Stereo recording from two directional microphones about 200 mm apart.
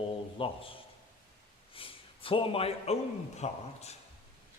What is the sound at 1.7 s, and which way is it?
A man's voice, 25° left (ahead or behind).